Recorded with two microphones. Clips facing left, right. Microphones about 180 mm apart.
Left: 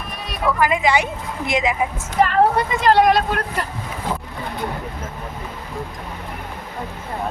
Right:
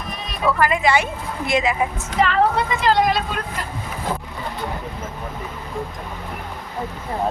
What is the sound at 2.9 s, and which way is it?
Speech, 65° left (ahead or behind).